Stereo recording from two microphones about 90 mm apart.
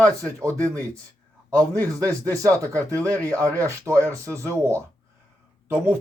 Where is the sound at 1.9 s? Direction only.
40° right (ahead or behind).